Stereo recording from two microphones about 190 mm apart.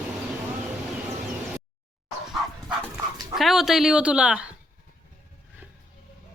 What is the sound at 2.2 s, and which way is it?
Dog, centre (ahead or behind).